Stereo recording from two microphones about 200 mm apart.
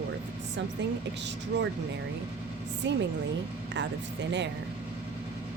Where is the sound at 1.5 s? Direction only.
60° right (ahead or behind).